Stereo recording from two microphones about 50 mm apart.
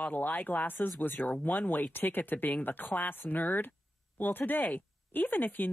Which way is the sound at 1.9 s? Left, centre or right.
Left.